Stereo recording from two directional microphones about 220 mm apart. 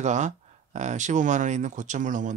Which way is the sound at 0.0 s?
35° right (ahead or behind).